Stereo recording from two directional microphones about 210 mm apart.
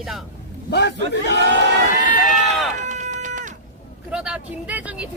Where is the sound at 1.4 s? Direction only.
55° right (ahead or behind).